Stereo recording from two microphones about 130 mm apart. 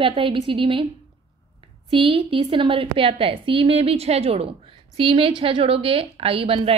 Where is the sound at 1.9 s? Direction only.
45° right (ahead or behind).